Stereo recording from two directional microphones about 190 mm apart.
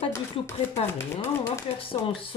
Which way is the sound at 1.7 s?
30° left (ahead or behind).